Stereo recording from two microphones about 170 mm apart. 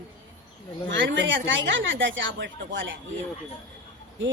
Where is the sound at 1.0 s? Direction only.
90° right.